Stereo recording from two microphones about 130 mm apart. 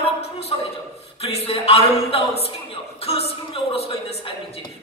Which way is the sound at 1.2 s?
50° left (ahead or behind).